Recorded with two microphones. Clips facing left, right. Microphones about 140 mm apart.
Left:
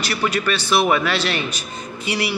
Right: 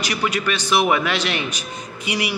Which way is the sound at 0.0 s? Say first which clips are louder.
Left 1 dB; 15° right (ahead or behind).